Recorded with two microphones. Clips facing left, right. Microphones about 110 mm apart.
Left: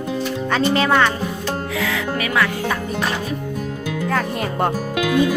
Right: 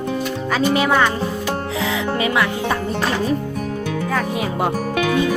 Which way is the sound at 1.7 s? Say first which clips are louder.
Right 3 dB; 25° right (ahead or behind).